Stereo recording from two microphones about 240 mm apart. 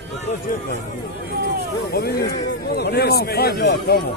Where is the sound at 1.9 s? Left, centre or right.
Left.